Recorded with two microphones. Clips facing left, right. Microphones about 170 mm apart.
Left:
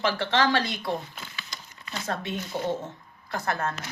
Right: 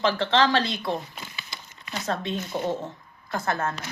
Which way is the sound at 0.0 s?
20° right (ahead or behind).